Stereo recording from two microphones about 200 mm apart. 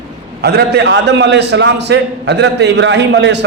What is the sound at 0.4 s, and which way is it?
A man's voice, 55° right (ahead or behind).